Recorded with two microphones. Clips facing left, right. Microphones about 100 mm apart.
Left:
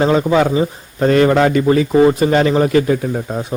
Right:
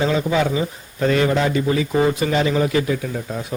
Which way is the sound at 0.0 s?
45° left (ahead or behind).